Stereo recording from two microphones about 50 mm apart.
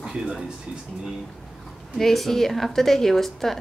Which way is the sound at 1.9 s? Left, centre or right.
Centre.